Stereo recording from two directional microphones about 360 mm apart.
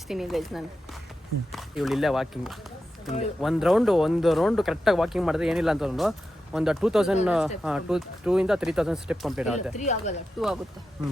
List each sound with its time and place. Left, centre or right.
0.1 s speech: centre
9.7 s speech: centre
10.4 s speech: centre